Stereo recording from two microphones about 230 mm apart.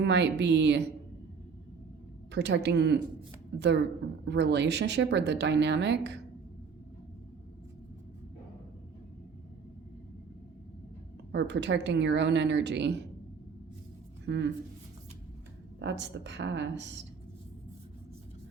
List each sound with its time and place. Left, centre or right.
0.0 s speech: right
2.3 s speech: right
4.3 s speech: right
11.3 s speech: right
14.3 s speech: right
15.8 s speech: right